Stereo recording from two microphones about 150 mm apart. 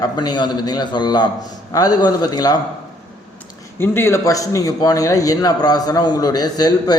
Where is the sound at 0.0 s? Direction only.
30° left (ahead or behind).